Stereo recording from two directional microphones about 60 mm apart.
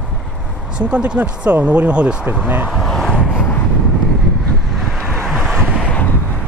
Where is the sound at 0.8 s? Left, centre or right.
Right.